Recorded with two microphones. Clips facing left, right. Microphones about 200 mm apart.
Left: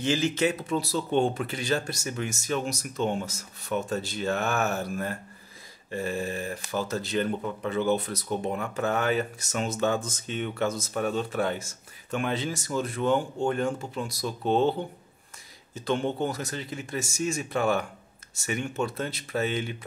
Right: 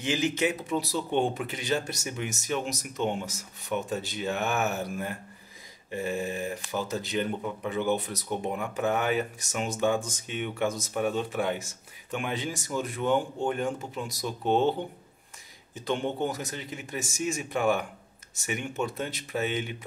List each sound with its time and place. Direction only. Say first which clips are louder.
0.0 s speech: left 2 dB; 15° right (ahead or behind)
15.7 s speech: left 2 dB; 15° right (ahead or behind)